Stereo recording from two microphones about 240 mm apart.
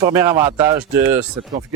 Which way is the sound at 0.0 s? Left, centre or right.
Centre.